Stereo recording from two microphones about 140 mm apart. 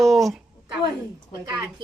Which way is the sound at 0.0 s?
Centre (ahead or behind).